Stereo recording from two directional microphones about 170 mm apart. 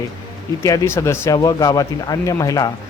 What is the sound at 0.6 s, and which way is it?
A man's voice, 20° left (ahead or behind).